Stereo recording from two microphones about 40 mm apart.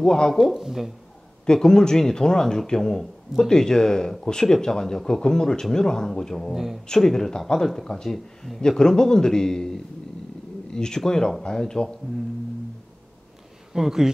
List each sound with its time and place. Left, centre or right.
0.0 s speech: centre
0.3 s speech: centre
1.4 s speech: centre
6.5 s speech: centre
6.9 s speech: centre
13.7 s speech: centre